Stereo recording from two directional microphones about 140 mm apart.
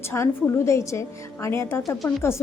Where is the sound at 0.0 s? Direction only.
15° left (ahead or behind).